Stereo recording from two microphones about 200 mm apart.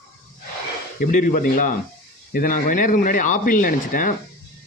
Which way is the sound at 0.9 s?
40° left (ahead or behind).